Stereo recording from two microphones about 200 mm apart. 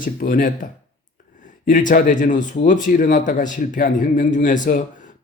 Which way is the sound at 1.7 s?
40° left (ahead or behind).